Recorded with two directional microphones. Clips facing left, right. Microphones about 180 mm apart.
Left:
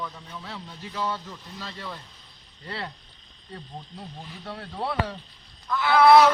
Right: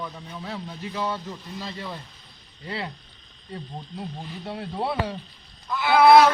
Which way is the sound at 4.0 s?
15° right (ahead or behind).